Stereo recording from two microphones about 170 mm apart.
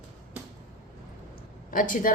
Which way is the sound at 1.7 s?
55° left (ahead or behind).